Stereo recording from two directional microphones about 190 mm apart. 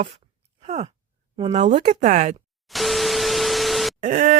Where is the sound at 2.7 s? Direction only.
Centre (ahead or behind).